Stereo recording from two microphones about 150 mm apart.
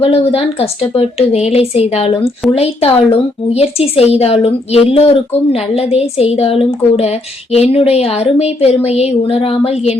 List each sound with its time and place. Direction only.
0.0 s a woman's voice: 40° left (ahead or behind)